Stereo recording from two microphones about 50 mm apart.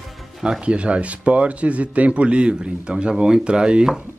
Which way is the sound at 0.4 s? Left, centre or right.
Centre.